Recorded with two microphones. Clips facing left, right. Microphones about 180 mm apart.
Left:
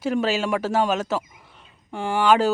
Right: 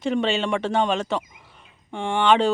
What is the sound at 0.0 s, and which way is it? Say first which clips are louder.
Speech: even; 5° left (ahead or behind).